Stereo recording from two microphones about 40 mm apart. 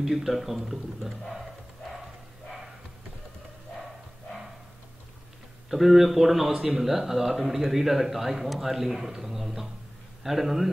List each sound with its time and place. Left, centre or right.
0.0 s speech: centre
1.3 s dog: centre
5.7 s speech: centre